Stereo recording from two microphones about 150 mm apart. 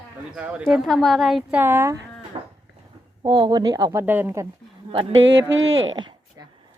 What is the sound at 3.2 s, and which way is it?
Speech, 30° right (ahead or behind).